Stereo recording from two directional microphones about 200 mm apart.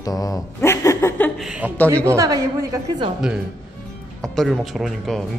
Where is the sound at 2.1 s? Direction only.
15° right (ahead or behind).